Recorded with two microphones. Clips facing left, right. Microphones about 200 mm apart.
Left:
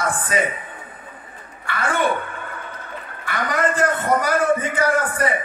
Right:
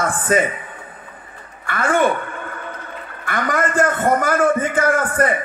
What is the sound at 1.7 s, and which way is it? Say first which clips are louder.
Speech: right 5 dB; 50° right (ahead or behind).